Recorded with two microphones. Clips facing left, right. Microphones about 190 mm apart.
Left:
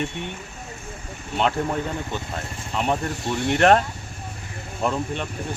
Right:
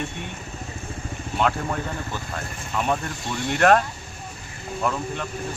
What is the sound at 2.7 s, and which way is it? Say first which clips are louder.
Speech: left 1 dB; 15° left (ahead or behind).